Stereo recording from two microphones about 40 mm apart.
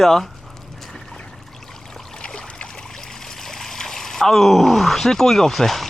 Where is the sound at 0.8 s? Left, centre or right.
Centre.